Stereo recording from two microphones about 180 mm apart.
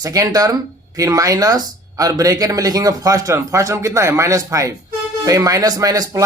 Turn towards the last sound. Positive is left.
turn(degrees=-20)  # may be behind; listen again after turning